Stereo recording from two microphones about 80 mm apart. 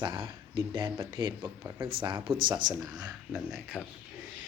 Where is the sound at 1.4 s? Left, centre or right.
Right.